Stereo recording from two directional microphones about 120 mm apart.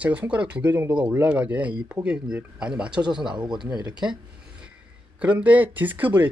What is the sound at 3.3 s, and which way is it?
Speech, 40° right (ahead or behind).